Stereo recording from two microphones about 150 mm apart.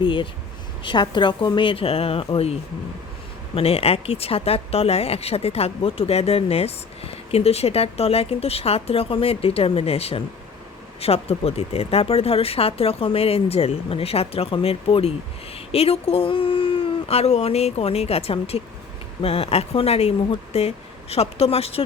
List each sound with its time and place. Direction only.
0.0 s speech: 35° left (ahead or behind)